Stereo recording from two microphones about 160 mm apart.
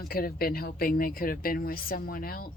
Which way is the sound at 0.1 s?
70° left (ahead or behind).